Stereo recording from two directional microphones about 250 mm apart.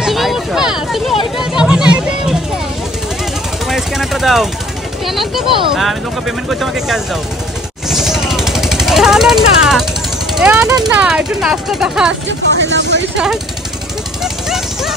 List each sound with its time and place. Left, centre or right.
0.0 s a sound: centre
3.6 s a sound: centre
5.0 s speech: centre
7.9 s vehicle: centre
10.3 s speech: centre
12.3 s vehicle: right
14.2 s dog: centre